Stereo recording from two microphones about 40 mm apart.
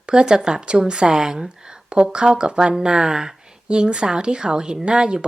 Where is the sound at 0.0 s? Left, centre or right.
Right.